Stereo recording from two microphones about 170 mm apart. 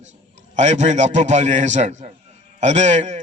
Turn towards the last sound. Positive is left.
turn(degrees=-45)  # may be behind; listen again after turning